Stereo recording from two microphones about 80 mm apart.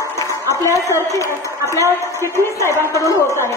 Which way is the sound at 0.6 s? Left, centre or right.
Left.